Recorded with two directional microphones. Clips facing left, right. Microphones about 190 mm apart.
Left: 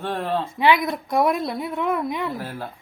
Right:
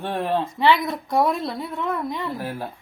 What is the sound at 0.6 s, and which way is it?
A woman's voice, 10° left (ahead or behind).